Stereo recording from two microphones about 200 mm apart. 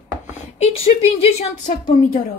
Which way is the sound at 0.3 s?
30° left (ahead or behind).